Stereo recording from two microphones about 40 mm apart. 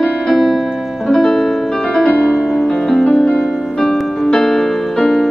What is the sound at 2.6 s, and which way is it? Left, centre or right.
Music, centre.